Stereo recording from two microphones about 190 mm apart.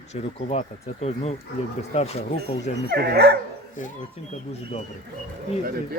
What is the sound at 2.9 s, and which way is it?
Speech, 55° right (ahead or behind).